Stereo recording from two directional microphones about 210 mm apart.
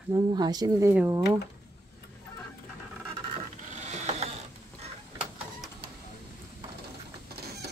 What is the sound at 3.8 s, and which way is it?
Mechanisms, 35° right (ahead or behind).